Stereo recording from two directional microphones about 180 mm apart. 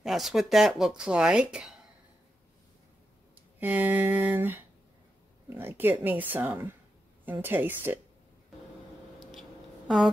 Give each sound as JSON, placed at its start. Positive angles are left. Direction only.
{"t": 0.0, "sound": "speech", "side_deg": 0}
{"t": 3.5, "sound": "speech", "side_deg": -10}
{"t": 9.2, "sound": "a sound", "side_deg": 0}